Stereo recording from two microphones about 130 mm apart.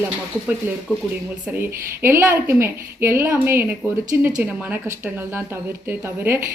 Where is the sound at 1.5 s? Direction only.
20° right (ahead or behind).